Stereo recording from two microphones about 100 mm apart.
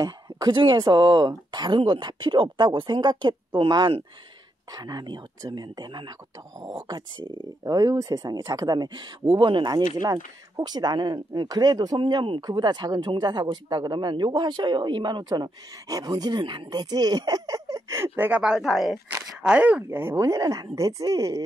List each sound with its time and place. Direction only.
0.0 s a sound: 40° right (ahead or behind)
0.6 s speech: 50° right (ahead or behind)
4.7 s speech: 45° right (ahead or behind)
12.0 s speech: 55° right (ahead or behind); by 18.1 s 30° right (ahead or behind)
18.1 s speech: 15° right (ahead or behind)
18.4 s speech: 5° right (ahead or behind); by 21.4 s 40° right (ahead or behind)